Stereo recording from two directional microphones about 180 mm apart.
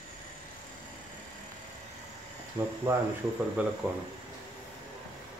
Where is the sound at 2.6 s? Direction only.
25° right (ahead or behind).